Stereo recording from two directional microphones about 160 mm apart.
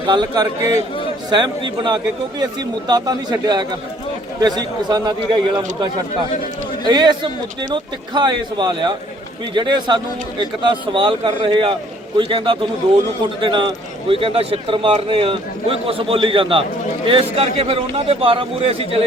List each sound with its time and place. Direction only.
0.1 s a man's voice: 25° right (ahead or behind)